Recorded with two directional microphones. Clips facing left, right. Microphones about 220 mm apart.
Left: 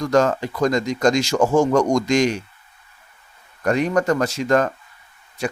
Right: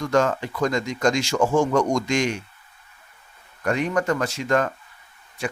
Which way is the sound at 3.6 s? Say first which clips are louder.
Left 4 dB; 40° left (ahead or behind).